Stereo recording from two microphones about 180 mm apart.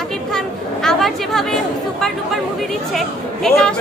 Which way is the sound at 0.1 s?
5° left (ahead or behind).